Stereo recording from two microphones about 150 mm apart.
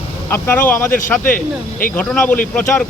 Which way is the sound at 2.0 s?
5° left (ahead or behind).